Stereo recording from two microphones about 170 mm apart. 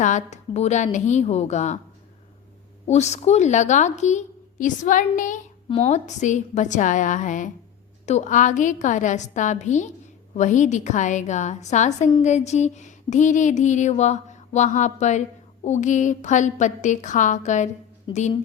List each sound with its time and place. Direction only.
0.0 s speech: 45° left (ahead or behind)
2.8 s speech: 40° left (ahead or behind)
5.6 s speech: 35° left (ahead or behind)